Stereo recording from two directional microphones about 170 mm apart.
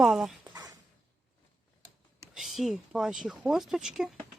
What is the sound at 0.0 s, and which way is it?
Speech, centre (ahead or behind).